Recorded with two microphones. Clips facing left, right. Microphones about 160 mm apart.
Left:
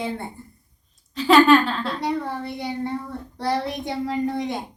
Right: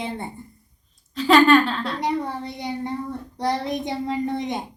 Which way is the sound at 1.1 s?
Centre (ahead or behind).